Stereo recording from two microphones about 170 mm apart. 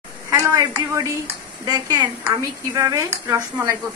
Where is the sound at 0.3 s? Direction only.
20° right (ahead or behind).